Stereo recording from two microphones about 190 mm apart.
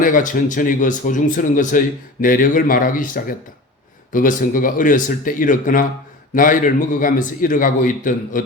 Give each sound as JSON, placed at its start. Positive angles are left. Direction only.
{"t": 0.0, "sound": "a man's voice", "side_deg": 45}